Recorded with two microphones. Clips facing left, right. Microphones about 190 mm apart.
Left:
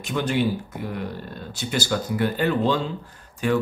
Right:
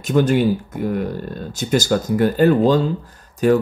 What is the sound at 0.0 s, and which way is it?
Speech, 45° right (ahead or behind).